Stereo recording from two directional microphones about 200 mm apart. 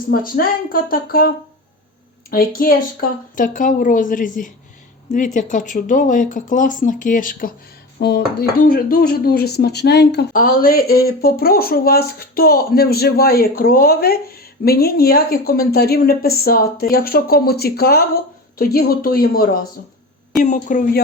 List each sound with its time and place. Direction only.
0.1 s speech: 45° left (ahead or behind)
2.3 s speech: 45° left (ahead or behind)
7.9 s speech: 55° left (ahead or behind); by 21.0 s 40° left (ahead or behind)